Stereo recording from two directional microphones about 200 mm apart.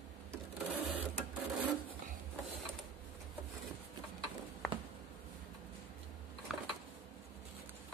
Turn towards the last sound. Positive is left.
turn(degrees=0)  # may be behind; listen again after turning